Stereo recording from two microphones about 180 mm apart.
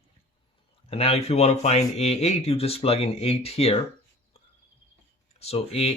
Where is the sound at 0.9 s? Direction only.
35° left (ahead or behind).